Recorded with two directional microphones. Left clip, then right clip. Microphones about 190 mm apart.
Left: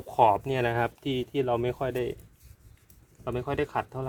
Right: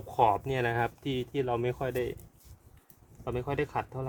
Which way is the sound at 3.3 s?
25° left (ahead or behind).